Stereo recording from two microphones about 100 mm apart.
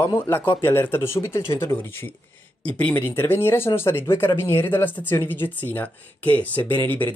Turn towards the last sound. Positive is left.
turn(degrees=20)  # may be behind; listen again after turning